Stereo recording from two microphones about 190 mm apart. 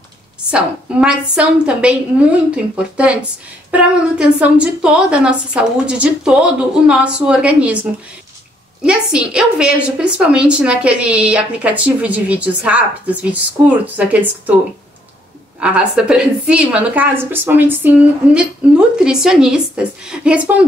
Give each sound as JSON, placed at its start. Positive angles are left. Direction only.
{"t": 0.5, "sound": "a woman's voice", "side_deg": -5}
{"t": 15.6, "sound": "a woman's voice", "side_deg": -5}